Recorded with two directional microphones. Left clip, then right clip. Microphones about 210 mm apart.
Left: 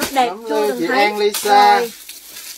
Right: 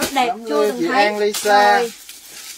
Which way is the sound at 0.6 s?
20° left (ahead or behind).